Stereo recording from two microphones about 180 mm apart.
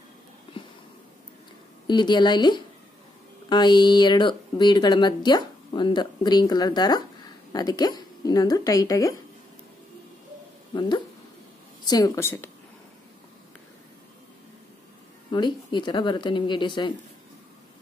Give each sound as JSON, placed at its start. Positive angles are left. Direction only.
{"t": 1.9, "sound": "speech", "side_deg": 25}
{"t": 10.7, "sound": "speech", "side_deg": 25}
{"t": 15.3, "sound": "speech", "side_deg": 25}